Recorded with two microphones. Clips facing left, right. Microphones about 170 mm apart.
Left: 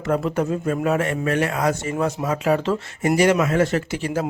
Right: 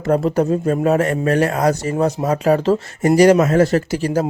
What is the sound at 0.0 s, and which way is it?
Speech, 35° right (ahead or behind).